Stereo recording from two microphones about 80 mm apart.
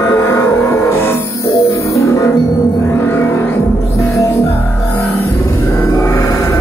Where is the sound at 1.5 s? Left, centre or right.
Left.